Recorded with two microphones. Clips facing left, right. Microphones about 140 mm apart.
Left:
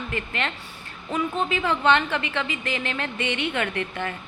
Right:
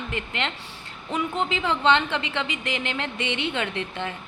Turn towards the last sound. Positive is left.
turn(degrees=-20)  # may be behind; listen again after turning